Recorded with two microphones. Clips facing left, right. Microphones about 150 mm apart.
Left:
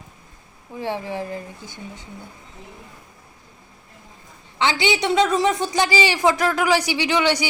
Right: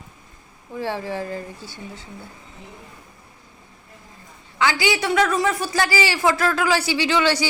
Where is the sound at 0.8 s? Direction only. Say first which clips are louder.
Even; 15° left (ahead or behind).